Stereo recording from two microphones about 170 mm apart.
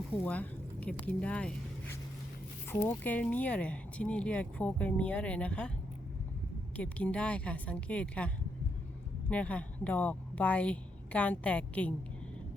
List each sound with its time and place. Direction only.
0.2 s speech: 10° left (ahead or behind)
6.7 s speech: 10° left (ahead or behind)
9.3 s speech: 5° left (ahead or behind)